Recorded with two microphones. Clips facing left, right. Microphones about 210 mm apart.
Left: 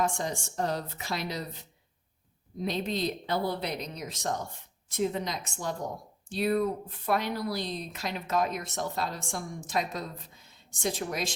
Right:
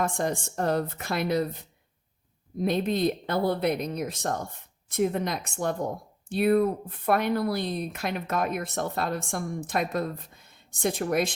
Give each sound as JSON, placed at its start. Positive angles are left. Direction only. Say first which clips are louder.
{"t": 0.0, "sound": "a woman's voice", "louder": "right 3 dB", "side_deg": -55}